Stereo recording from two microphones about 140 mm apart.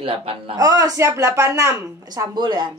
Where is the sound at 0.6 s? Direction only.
25° right (ahead or behind).